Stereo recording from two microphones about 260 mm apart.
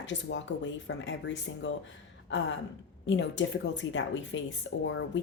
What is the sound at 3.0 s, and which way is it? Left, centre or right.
A woman's voice, left.